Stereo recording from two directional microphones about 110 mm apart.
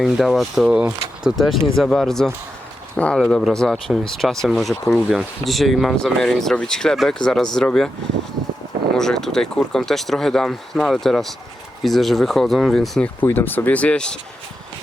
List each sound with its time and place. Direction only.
0.0 s speech: centre (ahead or behind)
9.0 s speech: 5° left (ahead or behind)
13.2 s speech: 20° left (ahead or behind)